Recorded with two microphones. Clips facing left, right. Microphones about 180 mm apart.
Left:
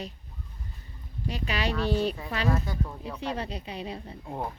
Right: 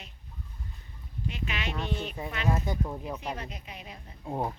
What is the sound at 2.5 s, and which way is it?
Speech, 20° right (ahead or behind).